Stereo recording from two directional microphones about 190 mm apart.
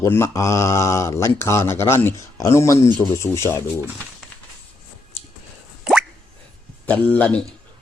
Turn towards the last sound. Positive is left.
turn(degrees=5)  # may be behind; listen again after turning